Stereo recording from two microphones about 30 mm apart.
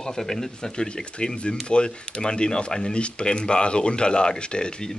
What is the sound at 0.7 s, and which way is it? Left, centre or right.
Speech, left.